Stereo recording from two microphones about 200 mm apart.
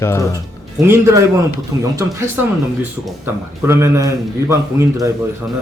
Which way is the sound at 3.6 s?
15° right (ahead or behind).